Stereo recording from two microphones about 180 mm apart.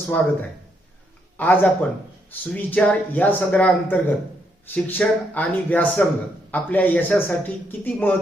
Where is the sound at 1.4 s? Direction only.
10° left (ahead or behind).